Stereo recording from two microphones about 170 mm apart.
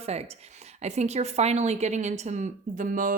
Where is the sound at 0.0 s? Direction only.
40° right (ahead or behind).